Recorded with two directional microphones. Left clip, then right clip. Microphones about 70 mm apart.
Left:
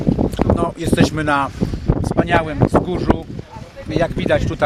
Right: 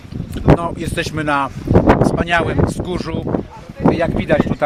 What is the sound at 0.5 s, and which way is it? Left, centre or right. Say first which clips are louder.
Speech: left 2 dB; centre.